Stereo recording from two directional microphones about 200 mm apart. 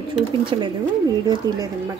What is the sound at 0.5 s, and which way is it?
Speech, 25° right (ahead or behind).